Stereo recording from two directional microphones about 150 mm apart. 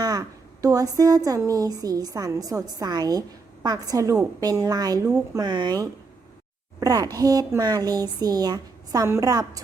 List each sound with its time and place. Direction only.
0.0 s a woman's voice: 25° right (ahead or behind)